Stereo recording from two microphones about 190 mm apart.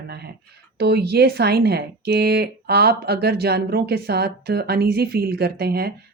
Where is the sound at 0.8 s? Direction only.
55° right (ahead or behind).